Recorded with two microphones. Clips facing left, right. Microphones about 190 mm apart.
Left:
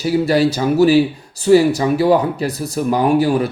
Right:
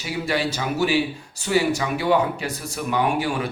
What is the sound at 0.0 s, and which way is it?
Speech, 40° left (ahead or behind).